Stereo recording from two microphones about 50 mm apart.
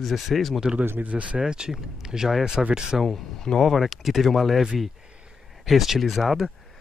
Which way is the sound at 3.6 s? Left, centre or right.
Centre.